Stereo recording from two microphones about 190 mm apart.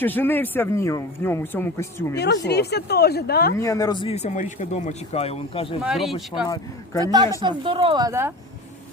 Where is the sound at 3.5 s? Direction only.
15° left (ahead or behind).